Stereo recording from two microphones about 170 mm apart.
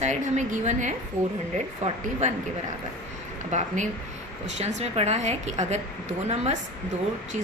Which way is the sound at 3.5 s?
45° right (ahead or behind).